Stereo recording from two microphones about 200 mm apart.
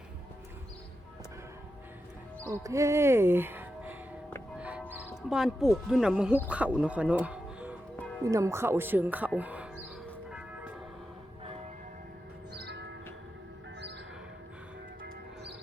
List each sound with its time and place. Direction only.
2.5 s speech: 15° right (ahead or behind)
12.5 s music: 55° right (ahead or behind)